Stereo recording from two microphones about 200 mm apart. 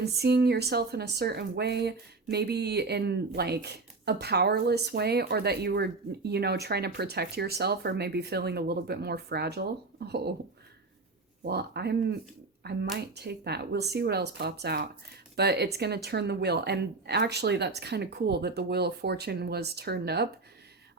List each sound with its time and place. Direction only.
0.0 s speech: 55° right (ahead or behind)
11.4 s speech: 55° right (ahead or behind)